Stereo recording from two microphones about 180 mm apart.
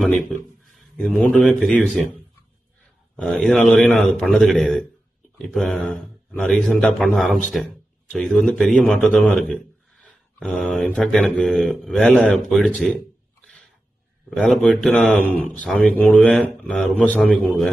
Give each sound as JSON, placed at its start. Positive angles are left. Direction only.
{"t": 0.3, "sound": "speech", "side_deg": 5}
{"t": 3.2, "sound": "a man's voice", "side_deg": 5}